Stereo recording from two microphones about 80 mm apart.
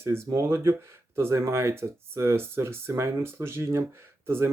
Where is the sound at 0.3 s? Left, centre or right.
Right.